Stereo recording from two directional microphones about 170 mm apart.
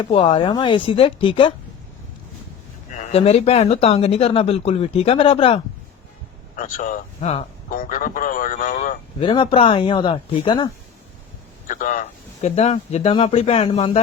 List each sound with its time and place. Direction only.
0.0 s speech: 30° left (ahead or behind)
2.9 s speech: 40° left (ahead or behind)
6.6 s a man's voice: 50° left (ahead or behind)
9.2 s speech: 30° left (ahead or behind)
11.7 s speech: 50° left (ahead or behind)